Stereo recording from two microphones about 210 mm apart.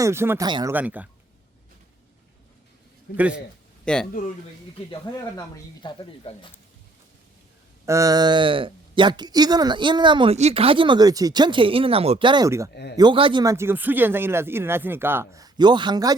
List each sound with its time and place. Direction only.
0.0 s speech: 10° right (ahead or behind)
0.7 s speech: 10° right (ahead or behind)
3.9 s a man's voice: 5° left (ahead or behind)
5.8 s speech: 20° left (ahead or behind)
7.9 s speech: 15° right (ahead or behind)
12.7 s speech: 50° left (ahead or behind)
13.0 s speech: 25° right (ahead or behind)